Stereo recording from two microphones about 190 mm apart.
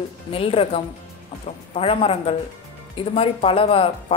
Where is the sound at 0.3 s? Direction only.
30° left (ahead or behind).